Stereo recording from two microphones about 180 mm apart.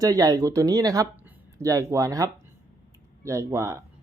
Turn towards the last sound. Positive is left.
turn(degrees=-15)  # may be behind; listen again after turning